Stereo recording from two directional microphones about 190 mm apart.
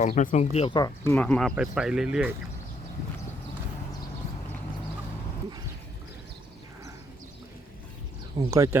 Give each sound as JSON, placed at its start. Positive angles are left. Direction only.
{"t": 0.0, "sound": "speech", "side_deg": 40}
{"t": 0.8, "sound": "speech", "side_deg": 20}
{"t": 1.1, "sound": "speech", "side_deg": 5}
{"t": 8.4, "sound": "speech", "side_deg": -15}